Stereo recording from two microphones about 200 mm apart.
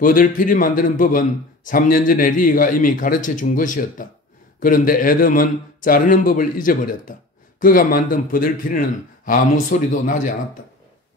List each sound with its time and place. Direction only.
0.0 s a man's voice: 45° left (ahead or behind)